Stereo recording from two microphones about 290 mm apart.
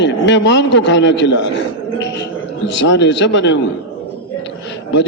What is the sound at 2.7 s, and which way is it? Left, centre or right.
Speech, left.